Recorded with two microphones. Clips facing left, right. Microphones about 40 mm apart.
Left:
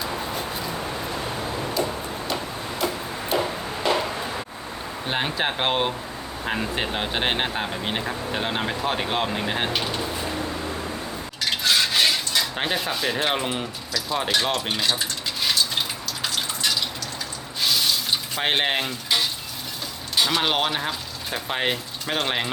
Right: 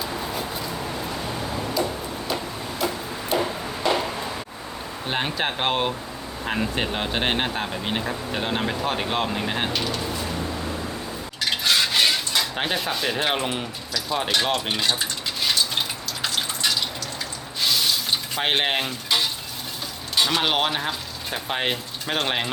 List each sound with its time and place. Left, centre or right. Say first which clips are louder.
1.7 s a sound: even; centre
5.0 s speech: even; centre
9.7 s speech: even; left
11.3 s dishes: even; centre
16.2 s drip: right 1 dB; centre
17.6 s sink: even; centre
18.3 s speech: even; centre
20.1 s speech: even; centre